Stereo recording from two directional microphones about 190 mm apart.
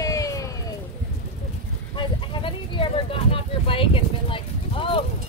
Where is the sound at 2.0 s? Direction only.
25° left (ahead or behind).